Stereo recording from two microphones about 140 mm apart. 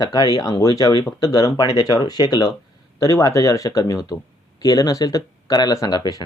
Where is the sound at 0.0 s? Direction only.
25° left (ahead or behind).